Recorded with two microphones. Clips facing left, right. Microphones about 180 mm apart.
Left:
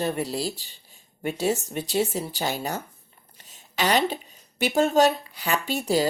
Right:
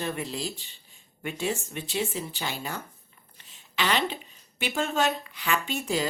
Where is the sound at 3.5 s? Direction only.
40° left (ahead or behind).